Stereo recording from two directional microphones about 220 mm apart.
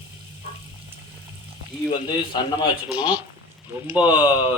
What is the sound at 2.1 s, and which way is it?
Speech, 20° left (ahead or behind).